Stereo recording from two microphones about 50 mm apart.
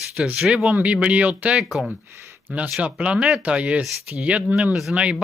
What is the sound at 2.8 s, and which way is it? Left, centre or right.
Speech, right.